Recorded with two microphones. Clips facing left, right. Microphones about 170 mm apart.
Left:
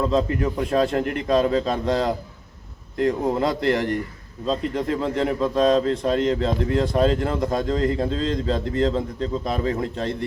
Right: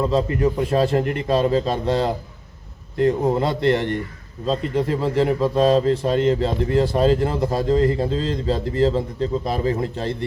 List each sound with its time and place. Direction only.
0.6 s a man's voice: centre (ahead or behind)